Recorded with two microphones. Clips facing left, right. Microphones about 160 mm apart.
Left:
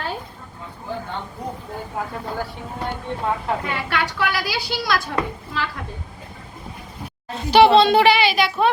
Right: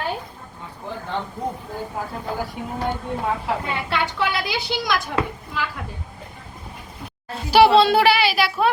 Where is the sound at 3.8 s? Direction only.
25° right (ahead or behind).